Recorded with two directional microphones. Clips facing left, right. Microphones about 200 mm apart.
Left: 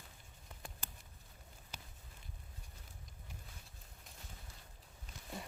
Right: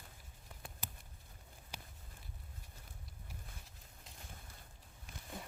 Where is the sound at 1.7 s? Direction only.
10° right (ahead or behind).